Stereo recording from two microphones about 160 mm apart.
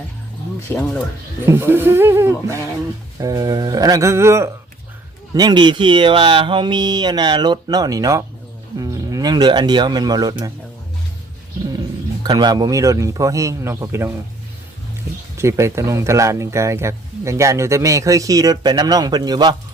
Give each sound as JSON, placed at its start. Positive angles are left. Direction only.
{"t": 0.7, "sound": "speech", "side_deg": 15}
{"t": 1.5, "sound": "speech", "side_deg": -15}
{"t": 12.2, "sound": "speech", "side_deg": -25}
{"t": 15.4, "sound": "speech", "side_deg": -15}